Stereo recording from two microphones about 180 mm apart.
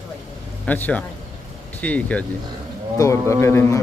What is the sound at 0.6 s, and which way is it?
A man's voice, 10° left (ahead or behind).